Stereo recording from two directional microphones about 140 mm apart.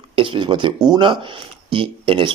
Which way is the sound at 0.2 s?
35° right (ahead or behind).